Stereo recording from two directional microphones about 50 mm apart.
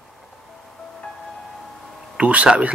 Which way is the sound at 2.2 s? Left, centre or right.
Right.